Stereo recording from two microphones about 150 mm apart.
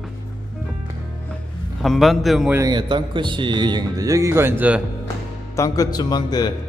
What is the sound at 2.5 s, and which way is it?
A man's voice, 30° right (ahead or behind).